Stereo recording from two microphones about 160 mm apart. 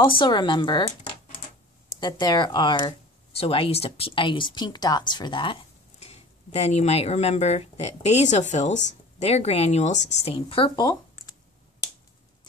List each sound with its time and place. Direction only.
0.2 s speech: 30° left (ahead or behind)
2.0 s speech: 25° left (ahead or behind)
2.9 s speech: 35° left (ahead or behind)